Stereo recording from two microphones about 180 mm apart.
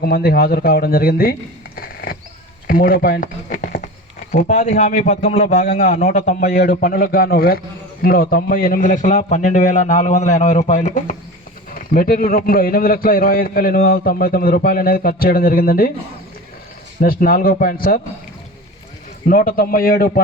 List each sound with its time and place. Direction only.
0.0 s a man's voice: 55° left (ahead or behind)
17.0 s a man's voice: 55° left (ahead or behind)
19.3 s a man's voice: 55° left (ahead or behind)